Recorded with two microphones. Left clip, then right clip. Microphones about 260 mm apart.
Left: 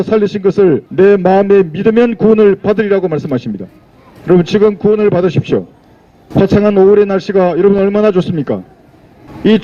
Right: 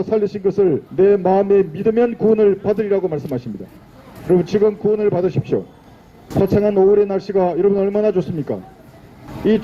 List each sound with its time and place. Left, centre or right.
0.0 s a man's voice: left